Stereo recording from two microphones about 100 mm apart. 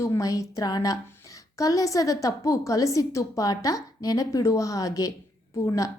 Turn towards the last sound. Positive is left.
turn(degrees=35)  # may be behind; listen again after turning